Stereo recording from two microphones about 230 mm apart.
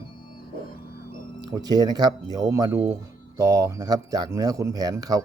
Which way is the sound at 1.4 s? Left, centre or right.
Centre.